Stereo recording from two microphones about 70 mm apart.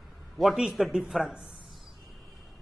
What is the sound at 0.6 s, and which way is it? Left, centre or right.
Speech, centre.